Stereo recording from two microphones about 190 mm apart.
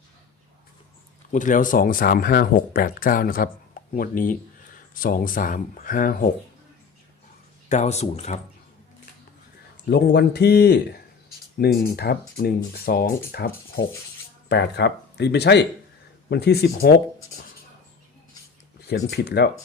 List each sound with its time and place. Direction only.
1.3 s speech: 40° left (ahead or behind)
7.7 s speech: 35° left (ahead or behind)
9.9 s speech: 60° left (ahead or behind)
19.1 s speech: 60° left (ahead or behind)